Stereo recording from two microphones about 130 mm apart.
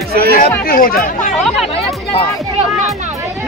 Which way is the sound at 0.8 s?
90° left.